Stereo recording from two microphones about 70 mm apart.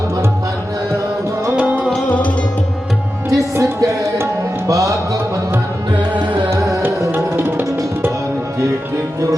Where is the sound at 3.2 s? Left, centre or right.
Right.